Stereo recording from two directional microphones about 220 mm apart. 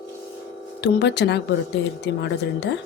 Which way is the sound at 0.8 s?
50° left (ahead or behind).